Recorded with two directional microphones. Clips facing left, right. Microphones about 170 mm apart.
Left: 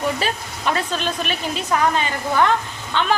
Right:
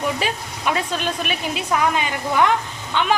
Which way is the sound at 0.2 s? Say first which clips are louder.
Even; 10° right (ahead or behind).